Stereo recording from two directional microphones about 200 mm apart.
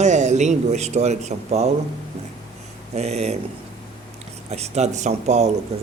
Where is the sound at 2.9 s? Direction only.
30° right (ahead or behind).